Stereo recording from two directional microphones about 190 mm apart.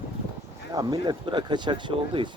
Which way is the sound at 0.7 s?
20° right (ahead or behind).